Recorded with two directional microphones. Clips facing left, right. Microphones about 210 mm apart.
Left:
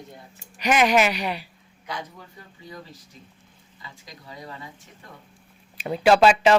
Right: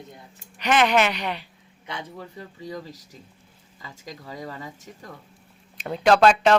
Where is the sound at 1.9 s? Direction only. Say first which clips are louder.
Even; 30° right (ahead or behind).